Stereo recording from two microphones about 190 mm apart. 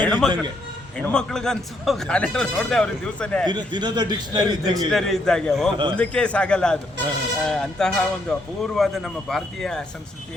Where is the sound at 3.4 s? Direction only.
25° right (ahead or behind).